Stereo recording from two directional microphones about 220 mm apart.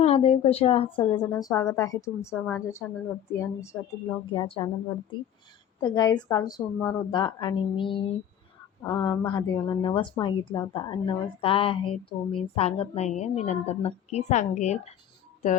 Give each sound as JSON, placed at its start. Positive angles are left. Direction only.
{"t": 0.0, "sound": "a woman's voice", "side_deg": 25}
{"t": 4.3, "sound": "a woman's voice", "side_deg": 25}
{"t": 5.8, "sound": "a woman's voice", "side_deg": 20}